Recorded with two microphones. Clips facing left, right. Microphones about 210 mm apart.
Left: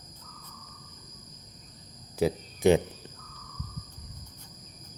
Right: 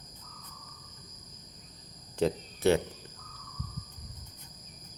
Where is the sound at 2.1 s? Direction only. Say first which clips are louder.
Left 2 dB; 10° left (ahead or behind).